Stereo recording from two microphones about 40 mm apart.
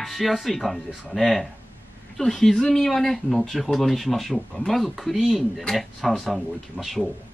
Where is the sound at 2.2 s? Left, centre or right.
Centre.